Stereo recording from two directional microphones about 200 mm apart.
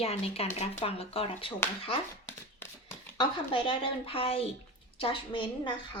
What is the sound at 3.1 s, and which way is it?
Speech, 25° left (ahead or behind).